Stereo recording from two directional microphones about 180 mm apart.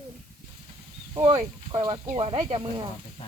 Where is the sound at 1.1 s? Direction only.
35° right (ahead or behind).